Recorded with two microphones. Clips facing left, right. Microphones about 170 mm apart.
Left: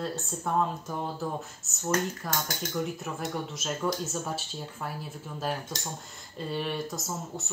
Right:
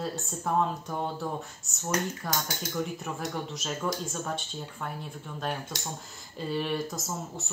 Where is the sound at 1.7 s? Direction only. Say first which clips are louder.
Left 2 dB; centre (ahead or behind).